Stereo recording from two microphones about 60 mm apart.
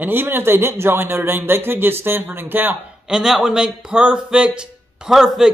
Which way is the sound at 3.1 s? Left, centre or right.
Centre.